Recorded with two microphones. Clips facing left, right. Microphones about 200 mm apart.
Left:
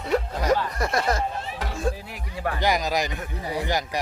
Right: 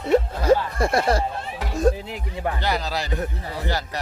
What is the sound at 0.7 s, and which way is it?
Speech, 30° right (ahead or behind).